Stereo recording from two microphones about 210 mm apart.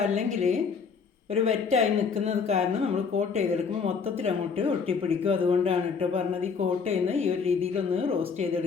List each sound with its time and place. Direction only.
0.0 s a woman's voice: 35° right (ahead or behind)